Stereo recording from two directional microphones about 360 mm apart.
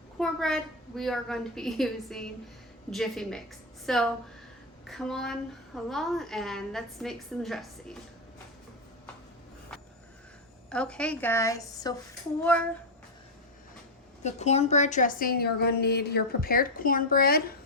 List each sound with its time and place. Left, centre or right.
0.2 s a woman's voice: centre
10.7 s a woman's voice: centre
14.3 s a woman's voice: centre